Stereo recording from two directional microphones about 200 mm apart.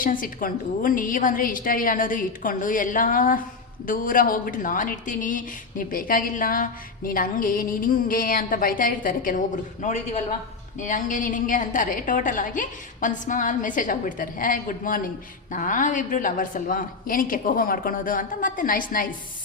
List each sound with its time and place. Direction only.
0.0 s a woman's voice: 45° left (ahead or behind)